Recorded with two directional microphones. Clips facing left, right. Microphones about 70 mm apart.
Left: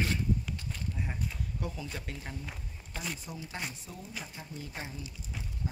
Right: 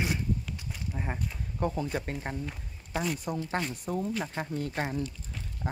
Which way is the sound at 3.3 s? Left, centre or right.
Right.